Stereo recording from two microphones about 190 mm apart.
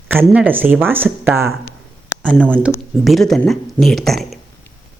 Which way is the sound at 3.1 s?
Centre (ahead or behind).